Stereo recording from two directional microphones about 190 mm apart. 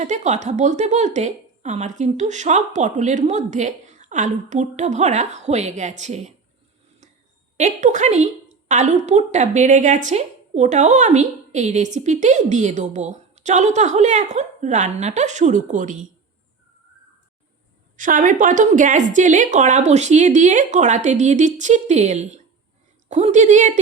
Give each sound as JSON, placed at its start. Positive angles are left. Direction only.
{"t": 0.0, "sound": "a woman's voice", "side_deg": -40}
{"t": 7.5, "sound": "a woman's voice", "side_deg": -40}
{"t": 17.9, "sound": "a woman's voice", "side_deg": -45}